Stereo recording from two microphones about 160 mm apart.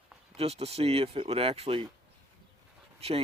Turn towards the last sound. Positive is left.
turn(degrees=-40)  # may be behind; listen again after turning